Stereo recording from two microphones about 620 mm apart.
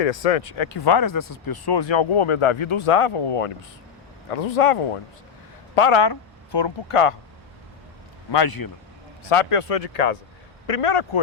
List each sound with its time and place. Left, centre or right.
0.0 s speech: left
8.3 s speech: left
9.3 s speech: left
10.7 s speech: left